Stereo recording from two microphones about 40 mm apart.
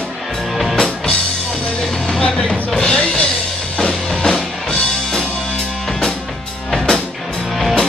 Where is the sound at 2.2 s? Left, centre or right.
Left.